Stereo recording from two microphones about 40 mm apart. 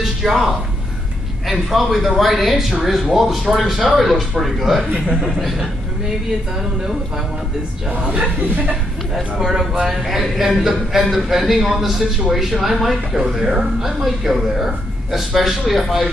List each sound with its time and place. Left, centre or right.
0.0 s a woman's voice: centre
5.0 s a man's voice: centre
5.3 s a man's voice: centre
8.1 s a man's voice: right
10.4 s a man's voice: centre